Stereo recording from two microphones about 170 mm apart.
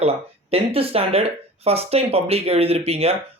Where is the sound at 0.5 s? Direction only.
35° right (ahead or behind).